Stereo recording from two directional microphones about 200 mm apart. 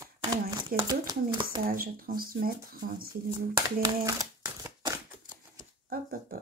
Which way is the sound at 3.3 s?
20° right (ahead or behind).